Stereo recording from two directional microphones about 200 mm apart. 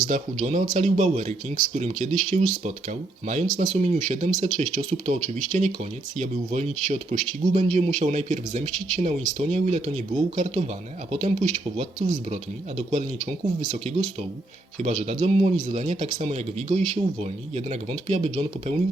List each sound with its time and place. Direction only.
0.0 s speech: 40° right (ahead or behind)